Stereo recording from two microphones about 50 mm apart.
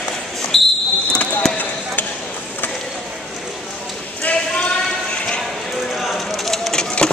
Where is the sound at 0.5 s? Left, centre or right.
Centre.